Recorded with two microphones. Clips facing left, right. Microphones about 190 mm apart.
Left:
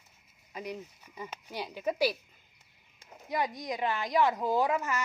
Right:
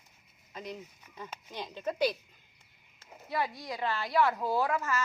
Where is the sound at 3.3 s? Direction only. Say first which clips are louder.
Left 2 dB; 20° left (ahead or behind).